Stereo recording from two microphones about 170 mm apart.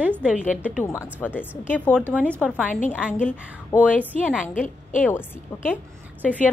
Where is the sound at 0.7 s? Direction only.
5° left (ahead or behind).